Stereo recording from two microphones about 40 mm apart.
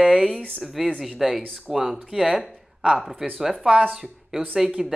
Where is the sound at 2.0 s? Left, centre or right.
Centre.